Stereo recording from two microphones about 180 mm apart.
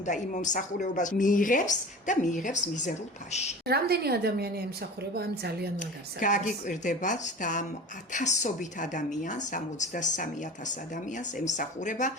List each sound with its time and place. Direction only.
0.0 s speech: 45° left (ahead or behind)
3.7 s a woman's voice: 60° right (ahead or behind)
6.1 s speech: 45° left (ahead or behind)
11.3 s speech: 45° left (ahead or behind)